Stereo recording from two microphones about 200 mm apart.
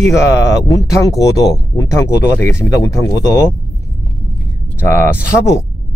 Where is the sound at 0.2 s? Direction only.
15° left (ahead or behind).